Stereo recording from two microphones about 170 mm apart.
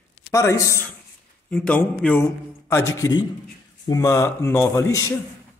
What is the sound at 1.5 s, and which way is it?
A man's voice, 5° left (ahead or behind).